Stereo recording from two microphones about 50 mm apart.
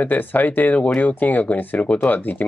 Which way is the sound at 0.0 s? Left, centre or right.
Left.